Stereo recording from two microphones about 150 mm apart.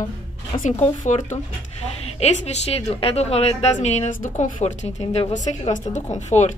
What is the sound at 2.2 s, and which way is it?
A woman's voice, 45° left (ahead or behind).